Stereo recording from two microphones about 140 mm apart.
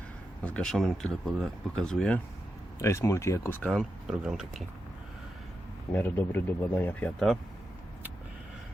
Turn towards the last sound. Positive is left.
turn(degrees=5)  # may be behind; listen again after turning